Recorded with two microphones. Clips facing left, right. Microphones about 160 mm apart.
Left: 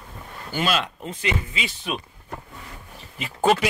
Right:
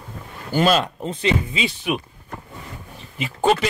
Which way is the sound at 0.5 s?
40° right (ahead or behind).